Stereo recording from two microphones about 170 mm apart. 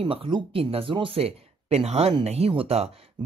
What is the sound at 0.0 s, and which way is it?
Speech, 30° right (ahead or behind).